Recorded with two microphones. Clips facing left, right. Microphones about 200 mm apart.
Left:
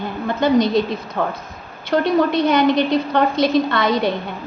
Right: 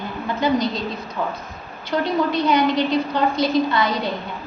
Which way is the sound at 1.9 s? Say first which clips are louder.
Left 4 dB; 55° left (ahead or behind).